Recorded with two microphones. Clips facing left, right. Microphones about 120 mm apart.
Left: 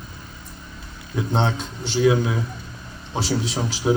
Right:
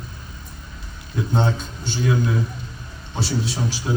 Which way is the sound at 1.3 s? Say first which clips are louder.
Even; 25° left (ahead or behind).